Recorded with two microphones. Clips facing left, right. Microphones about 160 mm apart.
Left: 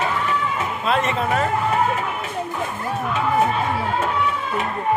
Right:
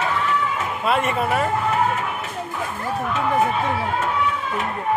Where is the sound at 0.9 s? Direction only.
10° right (ahead or behind).